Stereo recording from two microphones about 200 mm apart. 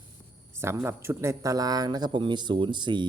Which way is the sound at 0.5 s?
10° right (ahead or behind).